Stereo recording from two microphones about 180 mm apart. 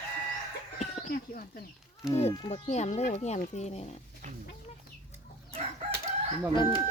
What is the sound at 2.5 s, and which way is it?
Speech, 40° left (ahead or behind).